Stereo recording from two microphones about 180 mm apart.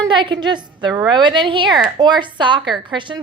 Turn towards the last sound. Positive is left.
turn(degrees=-25)  # may be behind; listen again after turning